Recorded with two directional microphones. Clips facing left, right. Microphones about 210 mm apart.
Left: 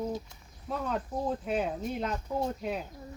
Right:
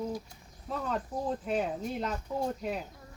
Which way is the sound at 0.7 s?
Centre (ahead or behind).